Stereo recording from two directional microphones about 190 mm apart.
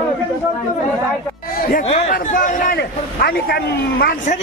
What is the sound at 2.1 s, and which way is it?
A man's voice, 45° left (ahead or behind).